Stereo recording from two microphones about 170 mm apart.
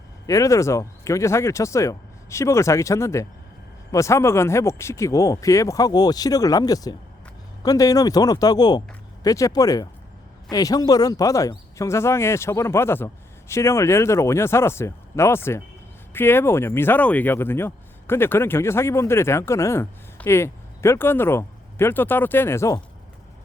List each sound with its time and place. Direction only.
0.3 s speech: 20° left (ahead or behind)